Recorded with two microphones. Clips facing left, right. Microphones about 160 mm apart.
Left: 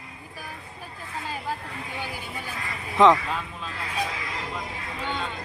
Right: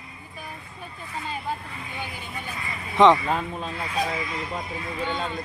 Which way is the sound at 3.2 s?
45° right (ahead or behind).